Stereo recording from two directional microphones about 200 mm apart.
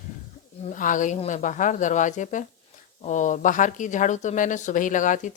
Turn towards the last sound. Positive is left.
turn(degrees=40)  # may be behind; listen again after turning